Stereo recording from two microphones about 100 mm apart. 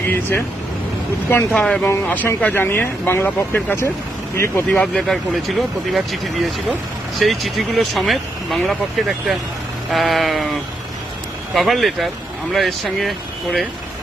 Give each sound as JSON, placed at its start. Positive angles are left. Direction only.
{"t": 0.0, "sound": "speech", "side_deg": 20}
{"t": 1.3, "sound": "speech", "side_deg": 10}
{"t": 1.8, "sound": "speech", "side_deg": 20}
{"t": 4.8, "sound": "speech", "side_deg": 5}